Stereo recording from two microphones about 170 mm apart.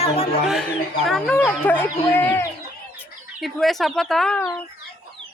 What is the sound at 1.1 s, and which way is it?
Speech, 5° left (ahead or behind).